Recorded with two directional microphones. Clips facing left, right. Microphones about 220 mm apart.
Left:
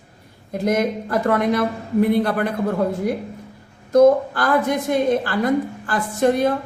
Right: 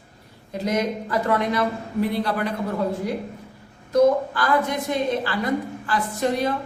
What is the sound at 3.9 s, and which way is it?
Speech, 50° left (ahead or behind).